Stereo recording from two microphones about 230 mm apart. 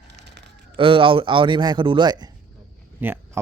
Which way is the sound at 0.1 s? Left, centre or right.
Right.